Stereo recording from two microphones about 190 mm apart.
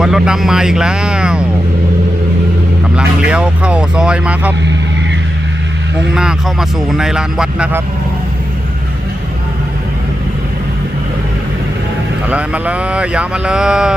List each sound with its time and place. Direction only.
0.0 s speech: 5° right (ahead or behind)
2.9 s speech: 5° right (ahead or behind)
6.1 s speech: 5° right (ahead or behind)
12.3 s speech: 5° right (ahead or behind)